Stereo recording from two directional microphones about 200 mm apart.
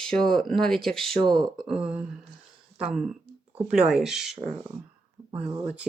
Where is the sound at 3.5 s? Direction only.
5° right (ahead or behind).